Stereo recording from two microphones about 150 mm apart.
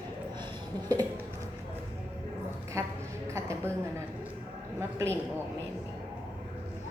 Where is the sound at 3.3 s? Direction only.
20° right (ahead or behind).